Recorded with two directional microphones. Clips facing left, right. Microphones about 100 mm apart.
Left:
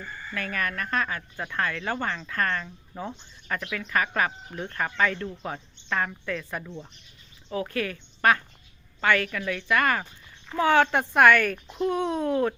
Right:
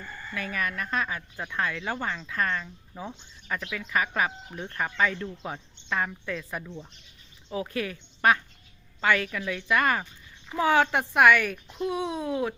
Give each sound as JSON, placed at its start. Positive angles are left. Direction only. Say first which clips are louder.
{"t": 0.3, "sound": "a woman's voice", "louder": "left 1 dB", "side_deg": -15}